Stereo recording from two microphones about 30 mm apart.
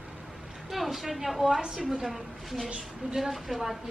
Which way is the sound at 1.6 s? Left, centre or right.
Right.